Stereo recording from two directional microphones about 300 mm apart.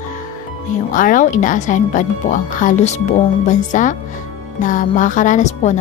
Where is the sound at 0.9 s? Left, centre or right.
Left.